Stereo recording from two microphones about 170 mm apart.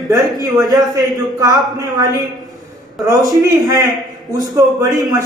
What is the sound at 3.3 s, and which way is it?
Speech, 20° right (ahead or behind).